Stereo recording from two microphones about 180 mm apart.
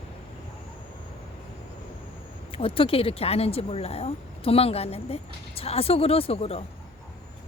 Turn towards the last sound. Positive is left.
turn(degrees=35)  # may be behind; listen again after turning